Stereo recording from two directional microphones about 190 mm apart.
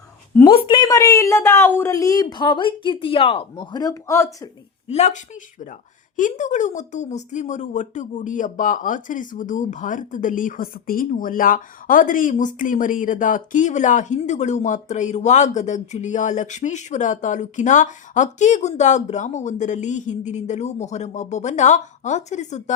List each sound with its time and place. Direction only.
0.4 s a woman's voice: 25° left (ahead or behind)
4.9 s speech: 35° left (ahead or behind)